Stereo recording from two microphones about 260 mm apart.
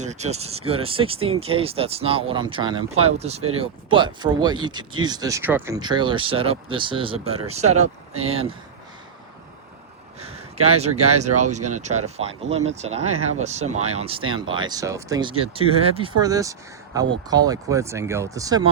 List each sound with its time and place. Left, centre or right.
0.0 s speech: right
10.2 s a sound: right
10.8 s speech: right